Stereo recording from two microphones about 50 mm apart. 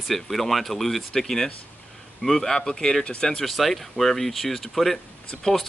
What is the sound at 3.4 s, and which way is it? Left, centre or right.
A man's voice, centre.